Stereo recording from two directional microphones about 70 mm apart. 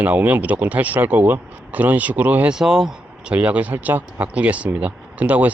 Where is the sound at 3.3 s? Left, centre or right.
Right.